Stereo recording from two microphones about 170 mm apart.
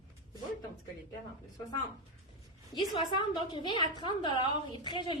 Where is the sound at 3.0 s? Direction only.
30° left (ahead or behind).